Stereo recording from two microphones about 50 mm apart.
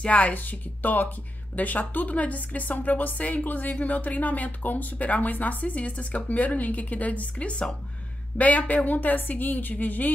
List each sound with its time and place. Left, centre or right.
0.0 s speech: left